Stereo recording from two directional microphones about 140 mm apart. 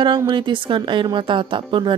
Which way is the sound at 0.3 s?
35° right (ahead or behind).